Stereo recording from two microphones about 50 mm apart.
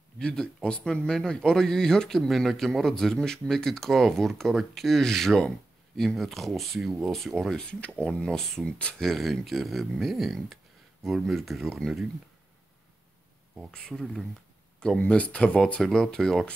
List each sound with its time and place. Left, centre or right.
0.2 s speech: centre
7.5 s speech: left
8.3 s speech: centre
8.6 s speech: left
9.0 s speech: centre
13.9 s speech: centre
15.0 s speech: left
15.8 s speech: centre